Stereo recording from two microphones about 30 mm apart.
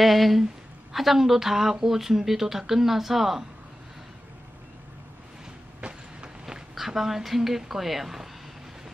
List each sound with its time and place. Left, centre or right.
0.0 s speech: centre
5.8 s train: right
6.9 s speech: centre